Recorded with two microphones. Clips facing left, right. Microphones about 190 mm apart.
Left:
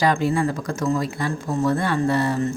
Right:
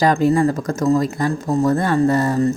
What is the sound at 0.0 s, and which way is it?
Speech, 40° right (ahead or behind).